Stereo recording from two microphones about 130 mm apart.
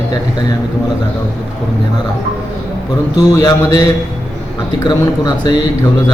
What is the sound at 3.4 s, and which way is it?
Speech, 30° left (ahead or behind).